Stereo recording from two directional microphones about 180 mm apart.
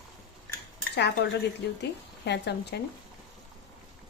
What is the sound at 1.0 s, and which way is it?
A woman's voice, 70° left (ahead or behind).